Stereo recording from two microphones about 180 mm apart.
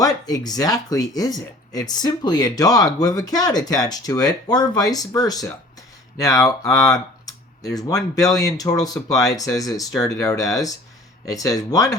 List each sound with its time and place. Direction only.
0.0 s speech: 20° left (ahead or behind)